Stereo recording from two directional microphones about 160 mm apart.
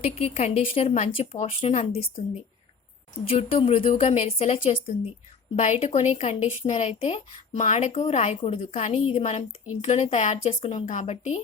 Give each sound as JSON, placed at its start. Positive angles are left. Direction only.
{"t": 0.0, "sound": "speech", "side_deg": 40}
{"t": 3.2, "sound": "speech", "side_deg": 35}
{"t": 5.5, "sound": "speech", "side_deg": 45}
{"t": 8.4, "sound": "speech", "side_deg": 30}
{"t": 8.6, "sound": "speech", "side_deg": 40}